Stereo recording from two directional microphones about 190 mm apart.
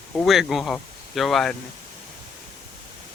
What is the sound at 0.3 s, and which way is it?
Speech, centre (ahead or behind).